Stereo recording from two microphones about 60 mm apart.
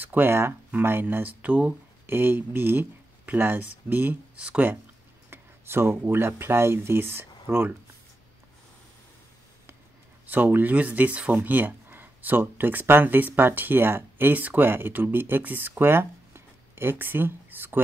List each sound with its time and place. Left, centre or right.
0.0 s speech: right
2.0 s speech: right
4.4 s speech: centre
5.3 s speech: right
10.2 s speech: right
15.8 s a sound: right
17.0 s speech: right